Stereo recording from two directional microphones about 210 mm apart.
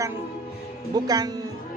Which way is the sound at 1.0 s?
20° right (ahead or behind).